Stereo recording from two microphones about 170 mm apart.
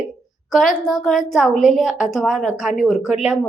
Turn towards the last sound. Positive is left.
turn(degrees=-5)  # may be behind; listen again after turning